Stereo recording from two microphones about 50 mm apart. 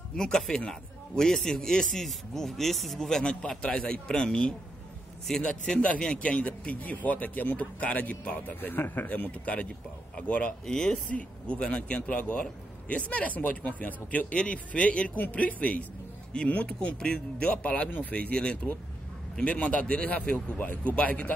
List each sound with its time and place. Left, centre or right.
0.2 s a man's voice: centre
3.1 s a man's voice: centre; by 10.5 s left
10.6 s a man's voice: centre
11.1 s a man's voice: left
16.6 s a man's voice: centre
20.5 s a man's voice: left